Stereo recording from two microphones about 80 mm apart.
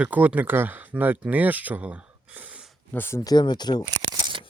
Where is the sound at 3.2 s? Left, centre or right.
Left.